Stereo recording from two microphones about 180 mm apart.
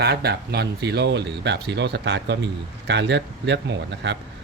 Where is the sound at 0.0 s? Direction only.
65° right (ahead or behind).